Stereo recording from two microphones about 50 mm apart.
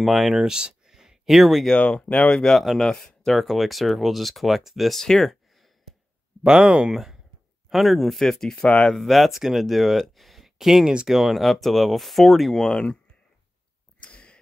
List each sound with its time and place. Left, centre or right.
0.0 s speech: centre
0.6 s a sound: centre
1.8 s speech: left
2.3 s speech: centre
3.3 s speech: centre
5.0 s a sound: centre
6.4 s speech: centre
7.7 s speech: centre
8.6 s speech: left
8.9 s speech: centre
10.9 s speech: centre
11.1 s speech: centre
12.6 s speech: centre
14.0 s a sound: left